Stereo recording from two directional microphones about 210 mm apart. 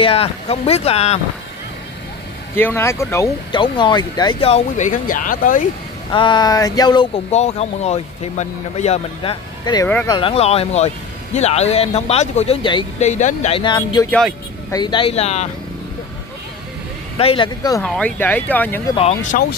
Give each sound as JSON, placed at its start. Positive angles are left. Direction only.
{"t": 0.0, "sound": "speech", "side_deg": 30}
{"t": 2.5, "sound": "speech", "side_deg": 10}
{"t": 6.1, "sound": "speech", "side_deg": 20}
{"t": 7.2, "sound": "speech", "side_deg": 30}
{"t": 17.2, "sound": "speech", "side_deg": 25}
{"t": 17.8, "sound": "speech", "side_deg": 5}
{"t": 19.3, "sound": "speech", "side_deg": 40}